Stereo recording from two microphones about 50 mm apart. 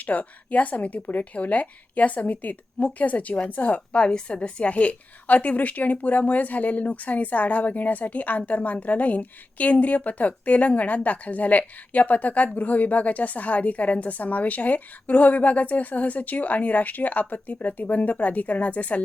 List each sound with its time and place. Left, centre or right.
0.0 s speech: left
4.0 s a woman's voice: centre